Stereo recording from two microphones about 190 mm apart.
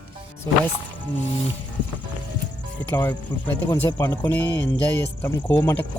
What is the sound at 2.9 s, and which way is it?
Speech, 10° left (ahead or behind).